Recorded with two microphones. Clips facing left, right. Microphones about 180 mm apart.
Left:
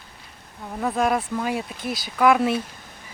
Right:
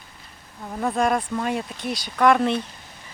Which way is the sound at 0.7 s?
Centre (ahead or behind).